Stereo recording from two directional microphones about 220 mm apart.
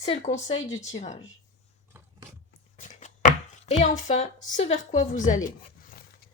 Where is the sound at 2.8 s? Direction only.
35° left (ahead or behind).